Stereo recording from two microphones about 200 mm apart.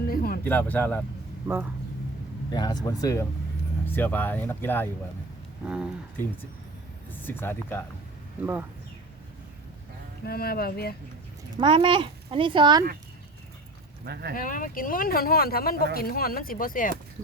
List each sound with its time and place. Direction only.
0.0 s a sound: 50° left (ahead or behind)
0.4 s speech: 10° left (ahead or behind)
1.5 s a man's voice: 10° right (ahead or behind)
2.5 s speech: 20° left (ahead or behind)
5.6 s speech: 5° right (ahead or behind)
7.1 s speech: 10° left (ahead or behind)
10.2 s speech: 50° left (ahead or behind)
11.6 s speech: 25° right (ahead or behind)
14.0 s speech: 55° right (ahead or behind)
14.3 s speech: 45° left (ahead or behind)